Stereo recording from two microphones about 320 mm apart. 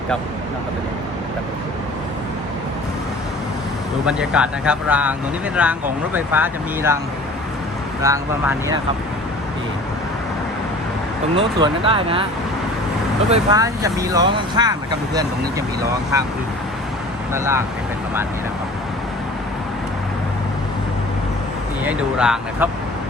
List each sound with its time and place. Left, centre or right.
4.0 s speech: centre
8.0 s speech: centre
11.3 s speech: centre
13.3 s speech: centre
17.3 s speech: centre
21.8 s speech: centre